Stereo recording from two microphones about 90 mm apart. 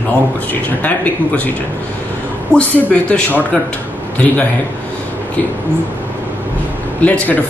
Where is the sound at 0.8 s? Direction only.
20° left (ahead or behind).